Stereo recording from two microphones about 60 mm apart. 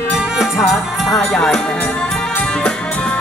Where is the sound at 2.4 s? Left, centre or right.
Centre.